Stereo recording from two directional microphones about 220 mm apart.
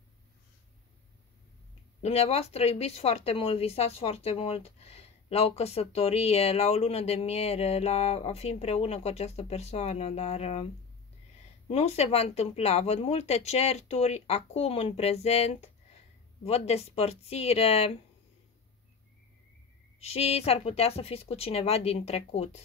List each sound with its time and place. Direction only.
2.0 s speech: 30° left (ahead or behind)
11.7 s speech: 30° left (ahead or behind)
20.0 s speech: 30° left (ahead or behind)